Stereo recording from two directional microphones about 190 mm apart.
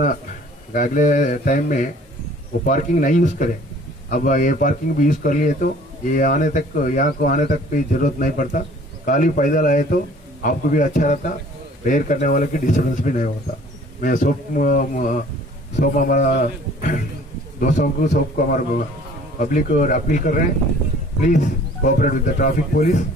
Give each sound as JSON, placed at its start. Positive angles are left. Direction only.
{"t": 0.7, "sound": "speech", "side_deg": 45}
{"t": 21.8, "sound": "speech", "side_deg": 45}